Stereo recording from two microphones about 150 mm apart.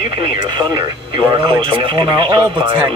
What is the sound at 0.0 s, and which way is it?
Speech, 30° right (ahead or behind).